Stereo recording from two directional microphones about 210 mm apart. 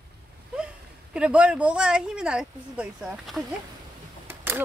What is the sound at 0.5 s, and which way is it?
Speech, 5° right (ahead or behind).